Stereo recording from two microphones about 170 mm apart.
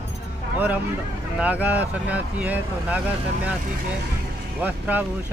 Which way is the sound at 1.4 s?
10° right (ahead or behind).